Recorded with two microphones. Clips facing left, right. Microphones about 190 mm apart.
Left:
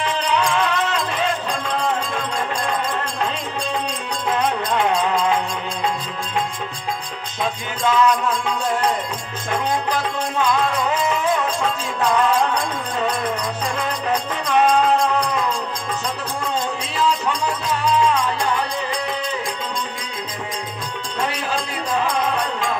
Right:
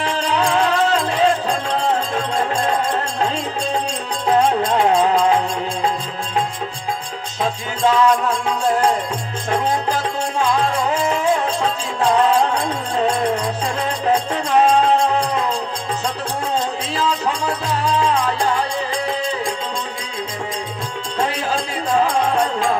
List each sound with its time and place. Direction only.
0.0 s music: 35° right (ahead or behind)
4.3 s music: 30° right (ahead or behind)
7.4 s music: 35° right (ahead or behind)
10.4 s music: 30° right (ahead or behind)
16.9 s music: 35° right (ahead or behind)